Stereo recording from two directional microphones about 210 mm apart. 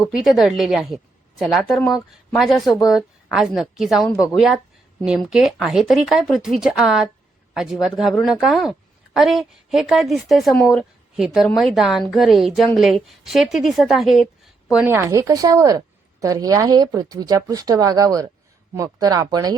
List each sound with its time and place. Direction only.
0.1 s a woman's voice: centre (ahead or behind); by 19.5 s 20° right (ahead or behind)